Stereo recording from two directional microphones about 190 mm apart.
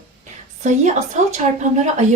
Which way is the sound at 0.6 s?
40° right (ahead or behind).